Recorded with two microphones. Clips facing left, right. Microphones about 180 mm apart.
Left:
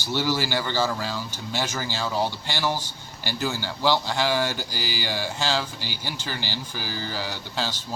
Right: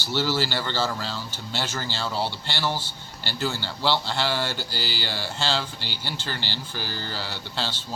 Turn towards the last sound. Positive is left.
turn(degrees=10)  # may be behind; listen again after turning